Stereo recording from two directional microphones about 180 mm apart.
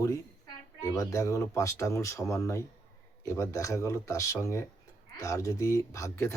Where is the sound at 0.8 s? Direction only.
15° left (ahead or behind).